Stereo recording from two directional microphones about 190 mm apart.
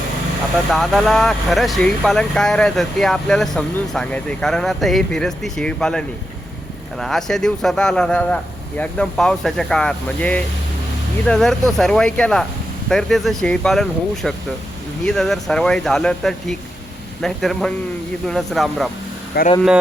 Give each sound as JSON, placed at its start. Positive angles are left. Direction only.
{"t": 0.7, "sound": "speech", "side_deg": 0}
{"t": 19.3, "sound": "speech", "side_deg": 55}